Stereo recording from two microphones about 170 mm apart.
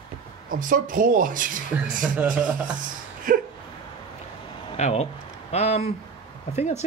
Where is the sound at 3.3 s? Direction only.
55° right (ahead or behind).